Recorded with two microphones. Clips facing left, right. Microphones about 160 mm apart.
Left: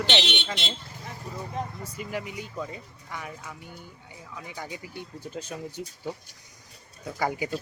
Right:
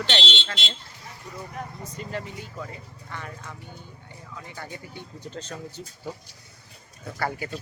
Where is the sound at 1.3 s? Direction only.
30° left (ahead or behind).